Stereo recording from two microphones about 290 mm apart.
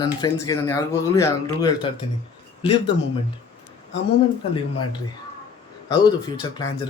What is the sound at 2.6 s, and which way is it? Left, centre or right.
Speech, centre.